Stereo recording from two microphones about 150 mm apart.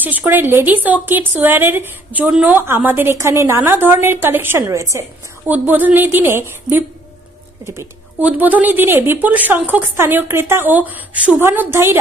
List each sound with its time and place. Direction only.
0.0 s a woman's voice: 10° right (ahead or behind)